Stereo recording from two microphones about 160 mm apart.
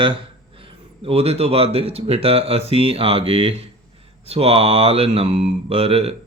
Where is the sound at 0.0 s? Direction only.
30° right (ahead or behind).